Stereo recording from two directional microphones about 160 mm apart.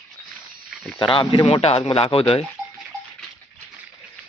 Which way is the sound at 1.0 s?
30° left (ahead or behind).